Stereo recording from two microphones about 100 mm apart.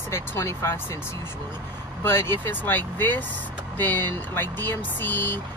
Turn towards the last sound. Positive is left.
turn(degrees=20)  # may be behind; listen again after turning